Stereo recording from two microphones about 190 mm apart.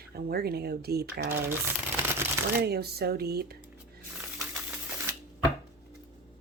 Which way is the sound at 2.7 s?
55° right (ahead or behind).